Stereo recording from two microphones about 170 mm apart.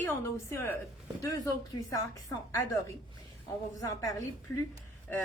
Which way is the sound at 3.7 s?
20° left (ahead or behind).